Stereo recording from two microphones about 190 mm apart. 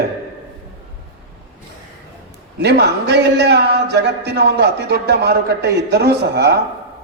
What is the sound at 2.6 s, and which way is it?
A man's voice, 60° right (ahead or behind).